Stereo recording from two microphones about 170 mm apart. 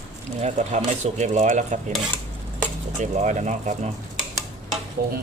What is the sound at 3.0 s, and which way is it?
Speech, 45° right (ahead or behind).